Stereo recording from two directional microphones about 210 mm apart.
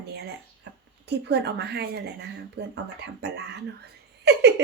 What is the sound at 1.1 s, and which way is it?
Speech, 50° right (ahead or behind).